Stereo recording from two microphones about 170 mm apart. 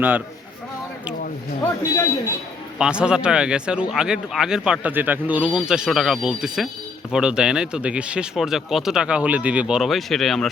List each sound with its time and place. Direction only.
1.6 s a man's voice: 15° left (ahead or behind)
2.7 s speech: 5° right (ahead or behind)